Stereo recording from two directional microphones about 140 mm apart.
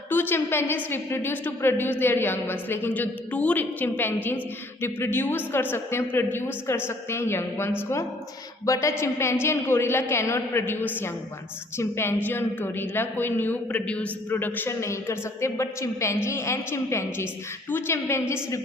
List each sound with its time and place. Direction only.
0.1 s a woman's voice: 15° left (ahead or behind)